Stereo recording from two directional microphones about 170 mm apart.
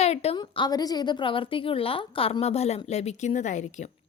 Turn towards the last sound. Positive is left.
turn(degrees=45)  # may be behind; listen again after turning